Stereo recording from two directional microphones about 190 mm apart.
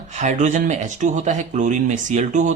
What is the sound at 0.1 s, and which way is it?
Speech, 40° right (ahead or behind).